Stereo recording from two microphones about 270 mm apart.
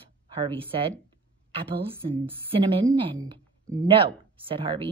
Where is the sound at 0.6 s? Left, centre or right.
Centre.